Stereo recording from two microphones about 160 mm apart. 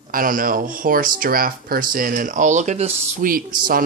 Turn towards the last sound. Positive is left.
turn(degrees=-60)  # may be behind; listen again after turning